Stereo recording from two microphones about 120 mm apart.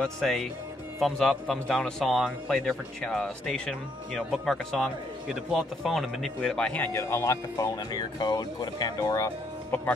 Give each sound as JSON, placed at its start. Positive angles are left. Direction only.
{"t": 0.0, "sound": "a man's voice", "side_deg": 0}
{"t": 7.0, "sound": "speech", "side_deg": 25}